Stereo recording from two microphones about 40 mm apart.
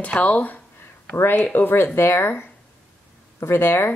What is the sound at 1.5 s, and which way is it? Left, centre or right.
Speech, left.